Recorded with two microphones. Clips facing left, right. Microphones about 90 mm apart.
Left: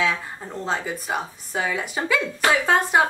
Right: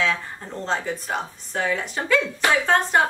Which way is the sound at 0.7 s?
5° left (ahead or behind).